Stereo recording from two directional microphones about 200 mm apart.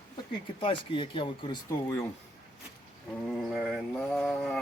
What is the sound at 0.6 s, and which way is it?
Speech, 25° left (ahead or behind).